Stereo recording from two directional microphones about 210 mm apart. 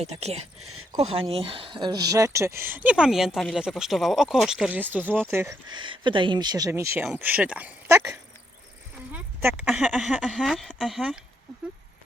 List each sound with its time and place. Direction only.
0.0 s speech: 30° right (ahead or behind)
0.6 s speech: 90° right
0.9 s speech: 30° right (ahead or behind); by 5.5 s 10° right (ahead or behind)
5.7 s speech: 25° right (ahead or behind); by 11.2 s centre (ahead or behind)